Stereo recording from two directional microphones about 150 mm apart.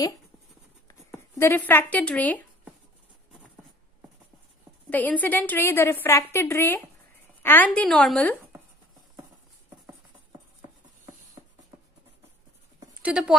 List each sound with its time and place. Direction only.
0.8 s speech: 15° left (ahead or behind)
4.8 s a woman's voice: 10° left (ahead or behind)
13.0 s speech: 5° right (ahead or behind)